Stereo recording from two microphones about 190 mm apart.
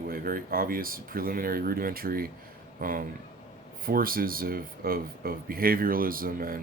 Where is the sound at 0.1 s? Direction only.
50° right (ahead or behind).